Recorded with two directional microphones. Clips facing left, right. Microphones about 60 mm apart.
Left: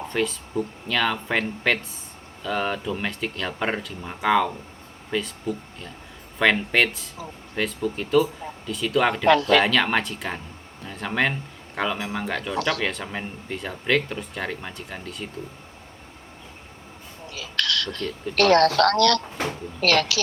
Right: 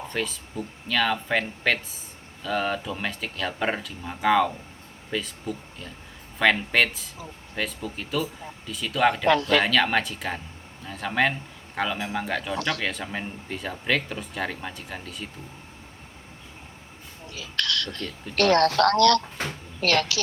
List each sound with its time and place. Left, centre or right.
0.1 s speech: centre
9.2 s speech: left
9.6 s speech: centre
17.3 s a sound: left
18.3 s speech: left